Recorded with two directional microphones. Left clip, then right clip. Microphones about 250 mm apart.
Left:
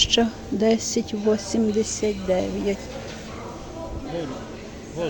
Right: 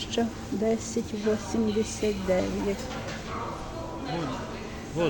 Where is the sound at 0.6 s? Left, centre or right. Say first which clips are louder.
Left 7 dB; centre.